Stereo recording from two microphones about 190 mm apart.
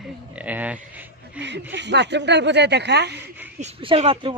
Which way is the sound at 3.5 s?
30° right (ahead or behind).